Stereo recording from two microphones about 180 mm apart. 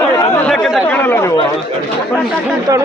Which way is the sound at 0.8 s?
10° left (ahead or behind).